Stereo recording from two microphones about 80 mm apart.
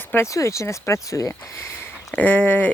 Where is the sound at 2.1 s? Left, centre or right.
Centre.